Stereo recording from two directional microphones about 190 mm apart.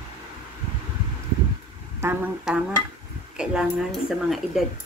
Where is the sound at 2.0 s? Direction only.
10° right (ahead or behind).